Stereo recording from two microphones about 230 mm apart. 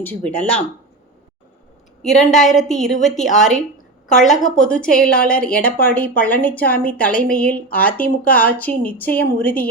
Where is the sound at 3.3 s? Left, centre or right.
Left.